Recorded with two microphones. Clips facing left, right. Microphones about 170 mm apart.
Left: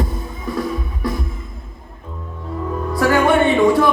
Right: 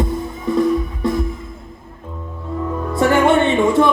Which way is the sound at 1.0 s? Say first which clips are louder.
Right 4 dB; 20° right (ahead or behind).